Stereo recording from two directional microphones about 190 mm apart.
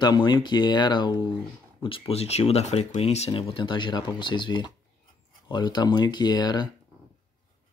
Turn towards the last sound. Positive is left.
turn(degrees=20)  # may be behind; listen again after turning